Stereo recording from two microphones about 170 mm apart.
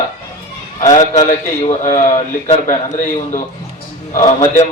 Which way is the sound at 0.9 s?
45° left (ahead or behind).